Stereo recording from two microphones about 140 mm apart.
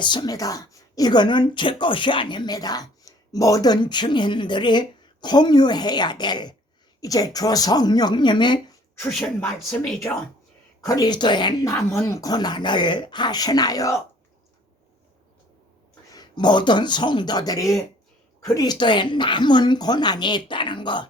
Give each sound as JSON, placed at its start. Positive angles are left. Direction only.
{"t": 0.0, "sound": "a woman's voice", "side_deg": 35}
{"t": 9.0, "sound": "speech", "side_deg": 10}
{"t": 10.8, "sound": "a woman's voice", "side_deg": 25}
{"t": 11.9, "sound": "speech", "side_deg": 20}
{"t": 16.0, "sound": "a woman's voice", "side_deg": 30}